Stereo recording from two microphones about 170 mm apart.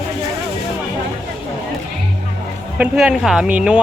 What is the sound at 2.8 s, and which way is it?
Speech, 5° right (ahead or behind).